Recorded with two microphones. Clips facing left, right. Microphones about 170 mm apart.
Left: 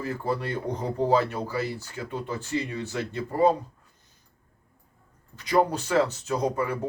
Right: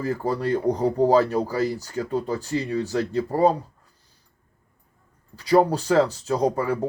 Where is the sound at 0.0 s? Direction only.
40° right (ahead or behind).